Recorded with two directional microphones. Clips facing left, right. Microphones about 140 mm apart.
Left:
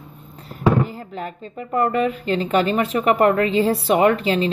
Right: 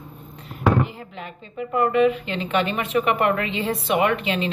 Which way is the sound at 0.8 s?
40° left (ahead or behind).